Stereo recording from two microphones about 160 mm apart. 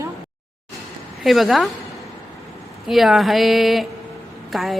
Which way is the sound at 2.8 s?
Centre (ahead or behind).